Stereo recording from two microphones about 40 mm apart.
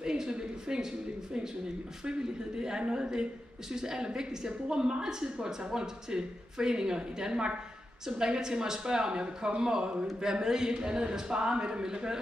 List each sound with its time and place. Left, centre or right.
0.0 s a woman's voice: centre